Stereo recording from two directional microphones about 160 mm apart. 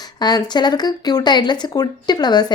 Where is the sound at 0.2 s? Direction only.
25° left (ahead or behind).